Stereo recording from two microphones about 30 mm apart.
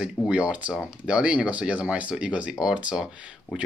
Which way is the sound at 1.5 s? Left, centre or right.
Right.